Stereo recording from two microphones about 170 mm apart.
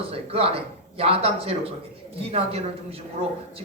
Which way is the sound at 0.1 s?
35° right (ahead or behind).